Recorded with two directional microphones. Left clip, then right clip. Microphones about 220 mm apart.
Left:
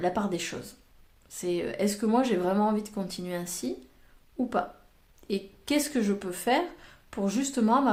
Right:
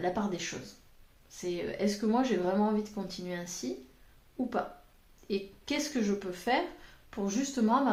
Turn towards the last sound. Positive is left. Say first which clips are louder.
# left 3 dB
turn(degrees=50)  # may be behind; listen again after turning